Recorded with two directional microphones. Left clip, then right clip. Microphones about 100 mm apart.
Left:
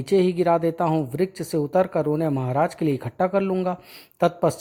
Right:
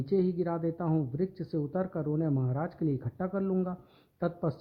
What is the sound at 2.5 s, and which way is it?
Speech, 60° left (ahead or behind).